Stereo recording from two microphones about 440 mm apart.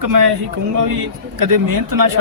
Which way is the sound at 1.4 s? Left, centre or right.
Right.